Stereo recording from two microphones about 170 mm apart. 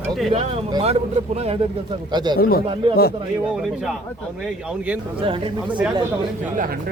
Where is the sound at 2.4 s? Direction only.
65° left (ahead or behind).